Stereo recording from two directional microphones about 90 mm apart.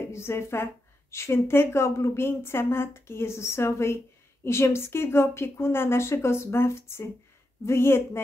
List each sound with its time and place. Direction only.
0.1 s a woman's voice: 30° left (ahead or behind)